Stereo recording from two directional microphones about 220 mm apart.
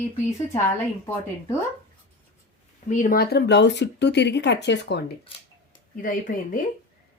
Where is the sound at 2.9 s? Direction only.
35° left (ahead or behind).